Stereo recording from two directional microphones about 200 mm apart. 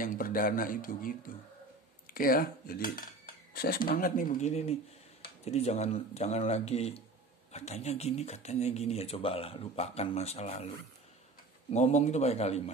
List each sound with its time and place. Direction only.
0.0 s speech: 45° left (ahead or behind)
11.7 s speech: 35° left (ahead or behind)